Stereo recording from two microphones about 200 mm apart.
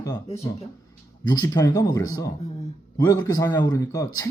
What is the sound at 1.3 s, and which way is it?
Speech, 20° left (ahead or behind).